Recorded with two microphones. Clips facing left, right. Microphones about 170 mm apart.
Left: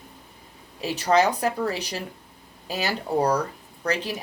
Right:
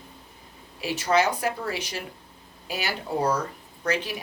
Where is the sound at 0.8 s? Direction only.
35° left (ahead or behind).